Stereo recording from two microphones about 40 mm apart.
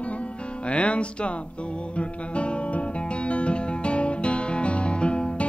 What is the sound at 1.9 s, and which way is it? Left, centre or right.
Guitar, left.